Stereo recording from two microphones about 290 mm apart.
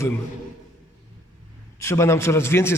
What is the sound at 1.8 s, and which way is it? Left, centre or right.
Speech, centre.